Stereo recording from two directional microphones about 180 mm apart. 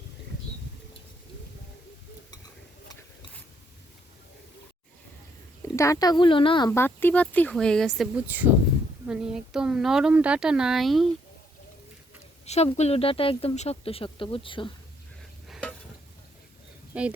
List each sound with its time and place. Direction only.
5.7 s speech: 15° left (ahead or behind)
6.7 s a woman's voice: 15° left (ahead or behind)
12.5 s speech: 40° left (ahead or behind)
15.4 s stir: centre (ahead or behind)
16.9 s speech: 5° right (ahead or behind)